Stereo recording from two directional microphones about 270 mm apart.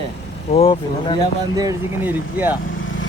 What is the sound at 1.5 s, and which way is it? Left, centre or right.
Speech, centre.